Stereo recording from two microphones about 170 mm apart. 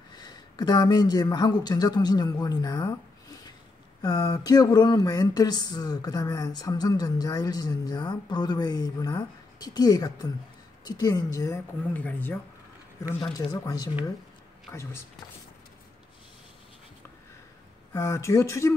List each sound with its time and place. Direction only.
0.2 s speech: 25° left (ahead or behind)
4.0 s a sound: 20° left (ahead or behind)
10.8 s speech: 25° left (ahead or behind)
13.3 s a sound: 20° left (ahead or behind)
14.7 s speech: 15° left (ahead or behind)
17.9 s speech: 15° left (ahead or behind)